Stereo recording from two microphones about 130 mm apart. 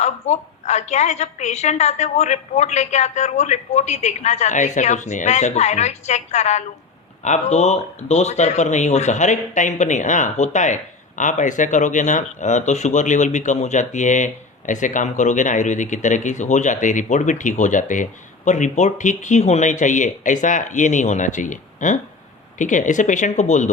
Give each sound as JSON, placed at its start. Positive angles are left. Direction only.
{"t": 0.0, "sound": "a woman's voice", "side_deg": 60}